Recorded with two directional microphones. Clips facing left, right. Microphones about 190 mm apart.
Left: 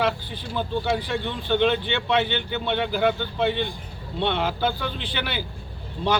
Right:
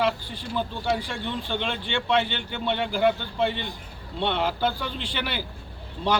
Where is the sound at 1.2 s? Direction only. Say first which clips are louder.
Left 5 dB; 5° right (ahead or behind).